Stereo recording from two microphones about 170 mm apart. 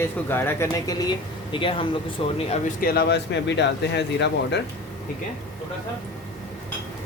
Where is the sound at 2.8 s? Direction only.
65° left (ahead or behind); by 4.6 s 90° left.